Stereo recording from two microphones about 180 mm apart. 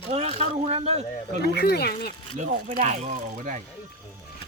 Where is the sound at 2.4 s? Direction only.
40° right (ahead or behind).